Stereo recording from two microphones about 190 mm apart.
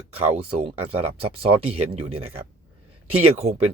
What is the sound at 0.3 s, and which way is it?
Speech, 30° right (ahead or behind).